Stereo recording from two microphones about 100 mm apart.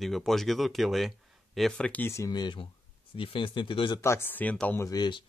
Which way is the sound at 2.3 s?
45° left (ahead or behind).